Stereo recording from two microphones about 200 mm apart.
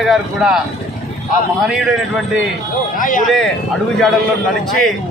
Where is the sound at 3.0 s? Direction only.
40° left (ahead or behind).